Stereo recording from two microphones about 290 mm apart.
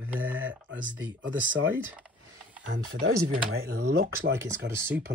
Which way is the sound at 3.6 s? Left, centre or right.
Right.